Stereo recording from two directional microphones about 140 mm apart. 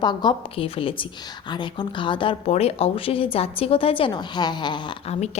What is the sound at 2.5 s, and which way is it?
Speech, 45° left (ahead or behind).